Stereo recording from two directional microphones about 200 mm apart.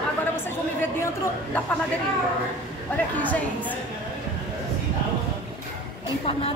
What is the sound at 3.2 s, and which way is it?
Speech, 10° left (ahead or behind).